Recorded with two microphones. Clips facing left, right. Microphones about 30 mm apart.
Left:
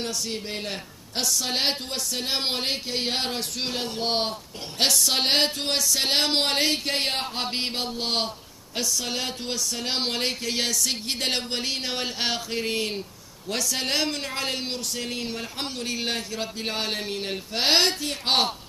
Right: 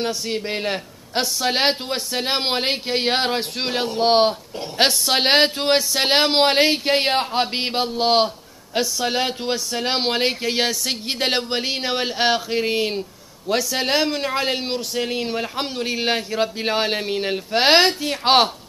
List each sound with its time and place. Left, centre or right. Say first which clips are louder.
0.0 s a man's voice: right 6 dB; right